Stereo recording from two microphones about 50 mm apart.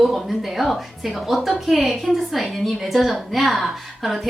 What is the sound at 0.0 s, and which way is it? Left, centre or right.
Speech, centre.